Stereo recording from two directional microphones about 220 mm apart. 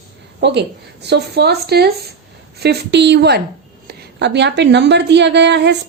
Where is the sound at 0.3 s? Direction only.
50° right (ahead or behind).